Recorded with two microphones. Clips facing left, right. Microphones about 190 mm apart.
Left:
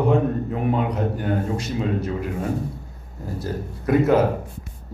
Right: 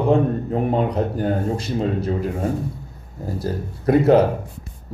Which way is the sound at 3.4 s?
35° right (ahead or behind).